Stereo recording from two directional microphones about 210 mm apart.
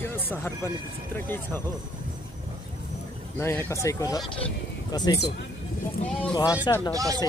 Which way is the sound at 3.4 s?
10° left (ahead or behind).